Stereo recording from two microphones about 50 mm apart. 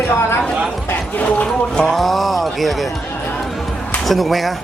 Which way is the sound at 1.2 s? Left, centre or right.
Left.